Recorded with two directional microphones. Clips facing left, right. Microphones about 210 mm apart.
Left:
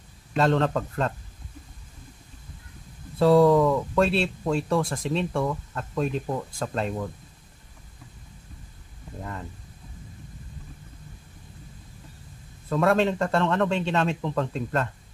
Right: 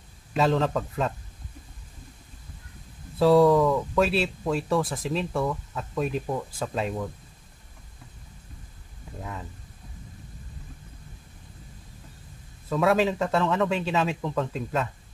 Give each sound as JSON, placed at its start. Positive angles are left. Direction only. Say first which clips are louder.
{"t": 0.3, "sound": "speech", "louder": "left 1 dB", "side_deg": 0}
{"t": 3.2, "sound": "speech", "louder": "left 1 dB", "side_deg": 0}
{"t": 9.2, "sound": "speech", "louder": "left 1 dB", "side_deg": 0}
{"t": 12.6, "sound": "speech", "louder": "left 1 dB", "side_deg": 0}